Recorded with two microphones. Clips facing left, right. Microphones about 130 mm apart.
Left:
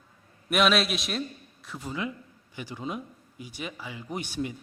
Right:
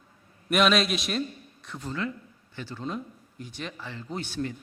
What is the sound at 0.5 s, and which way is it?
A man's voice, centre (ahead or behind).